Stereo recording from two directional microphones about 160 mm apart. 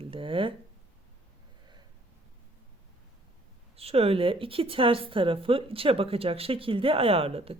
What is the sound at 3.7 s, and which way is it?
Speech, 35° right (ahead or behind).